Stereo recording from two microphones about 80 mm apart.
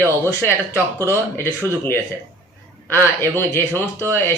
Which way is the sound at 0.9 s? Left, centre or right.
Left.